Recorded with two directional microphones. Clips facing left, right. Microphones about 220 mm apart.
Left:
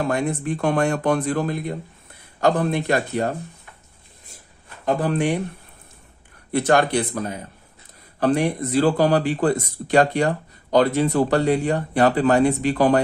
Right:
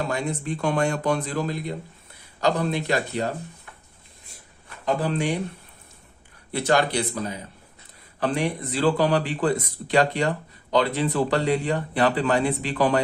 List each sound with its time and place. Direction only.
0.1 s speech: 55° left (ahead or behind)
5.0 s speech: 55° left (ahead or behind)
6.5 s speech: 50° left (ahead or behind)